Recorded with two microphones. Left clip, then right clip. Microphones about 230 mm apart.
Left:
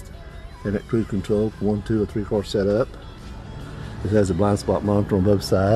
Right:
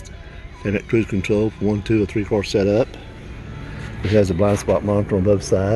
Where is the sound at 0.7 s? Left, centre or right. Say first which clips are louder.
Right 4 dB; right.